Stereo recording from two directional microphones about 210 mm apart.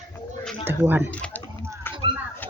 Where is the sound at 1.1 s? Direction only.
5° left (ahead or behind).